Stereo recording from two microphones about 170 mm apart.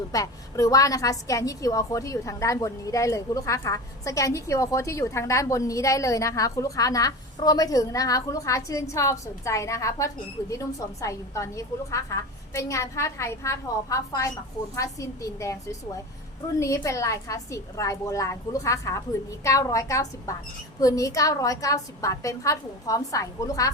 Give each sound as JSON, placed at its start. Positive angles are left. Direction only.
{"t": 0.1, "sound": "a woman's voice", "side_deg": 20}